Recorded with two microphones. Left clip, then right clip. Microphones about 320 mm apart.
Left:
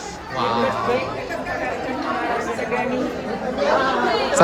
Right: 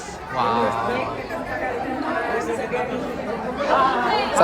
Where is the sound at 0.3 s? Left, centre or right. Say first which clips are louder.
Even; centre.